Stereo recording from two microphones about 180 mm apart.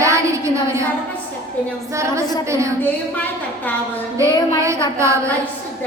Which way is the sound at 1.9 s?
15° right (ahead or behind).